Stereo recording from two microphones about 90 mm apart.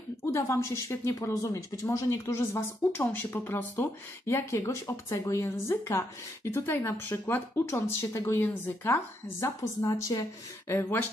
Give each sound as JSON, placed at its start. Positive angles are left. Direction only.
{"t": 0.2, "sound": "a woman's voice", "side_deg": 30}
{"t": 10.7, "sound": "a woman's voice", "side_deg": 25}